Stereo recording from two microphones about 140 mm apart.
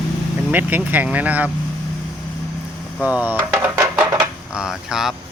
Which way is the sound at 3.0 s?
10° right (ahead or behind).